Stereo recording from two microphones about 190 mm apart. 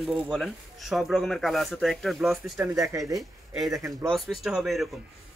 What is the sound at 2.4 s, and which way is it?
Speech, 10° right (ahead or behind).